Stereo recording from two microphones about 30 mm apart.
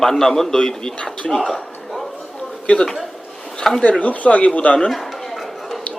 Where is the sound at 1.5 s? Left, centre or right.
Centre.